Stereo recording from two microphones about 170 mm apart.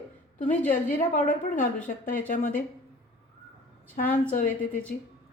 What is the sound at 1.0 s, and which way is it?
A woman's voice, 45° left (ahead or behind).